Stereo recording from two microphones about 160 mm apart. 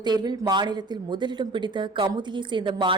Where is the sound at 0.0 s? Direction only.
25° right (ahead or behind).